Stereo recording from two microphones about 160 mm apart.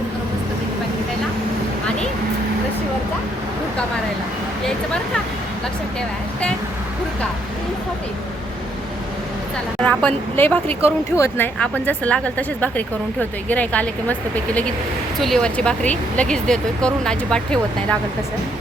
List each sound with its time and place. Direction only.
9.8 s speech: 10° left (ahead or behind)
10.7 s speech: 40° right (ahead or behind)
11.2 s speech: 10° left (ahead or behind)